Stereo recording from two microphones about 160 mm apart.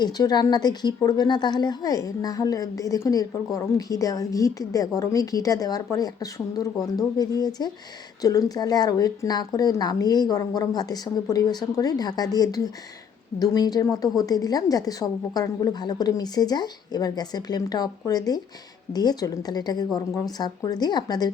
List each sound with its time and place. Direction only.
0.0 s a woman's voice: 25° left (ahead or behind)